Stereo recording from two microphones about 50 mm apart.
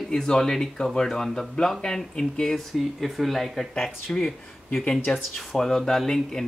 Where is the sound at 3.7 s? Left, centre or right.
Centre.